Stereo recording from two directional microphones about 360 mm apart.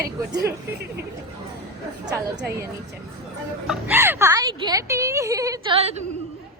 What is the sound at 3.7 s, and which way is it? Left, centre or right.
Speech, centre.